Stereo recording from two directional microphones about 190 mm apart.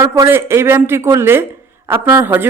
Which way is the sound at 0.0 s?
15° right (ahead or behind).